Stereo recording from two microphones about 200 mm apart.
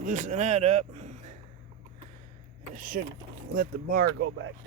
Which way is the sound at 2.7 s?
45° right (ahead or behind).